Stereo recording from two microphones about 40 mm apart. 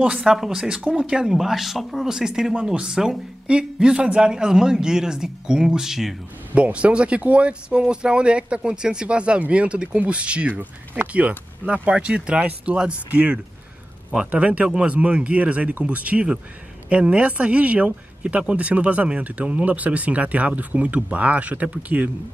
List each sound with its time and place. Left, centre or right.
0.0 s speech: right
0.3 s speech: centre
1.2 s speech: centre
2.0 s a man's voice: centre
6.5 s speech: right
14.1 s speech: right
14.7 s speech: right